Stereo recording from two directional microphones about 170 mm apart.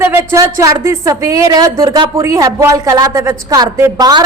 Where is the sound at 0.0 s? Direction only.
15° right (ahead or behind).